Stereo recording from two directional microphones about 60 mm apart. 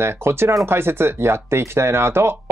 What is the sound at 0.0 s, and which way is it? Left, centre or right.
Speech, right.